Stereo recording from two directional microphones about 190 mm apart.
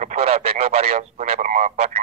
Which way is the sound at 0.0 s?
35° right (ahead or behind).